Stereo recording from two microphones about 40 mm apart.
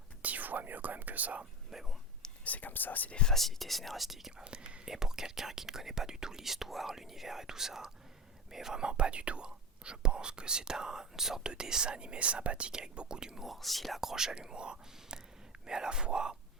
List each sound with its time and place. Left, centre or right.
0.2 s whispering: right
1.7 s speech: centre
2.4 s speech: left
3.2 s speech: centre
4.4 s speech: right
4.9 s speech: centre
8.8 s speech: right
12.7 s speech: centre
13.6 s speech: centre; by 16.4 s right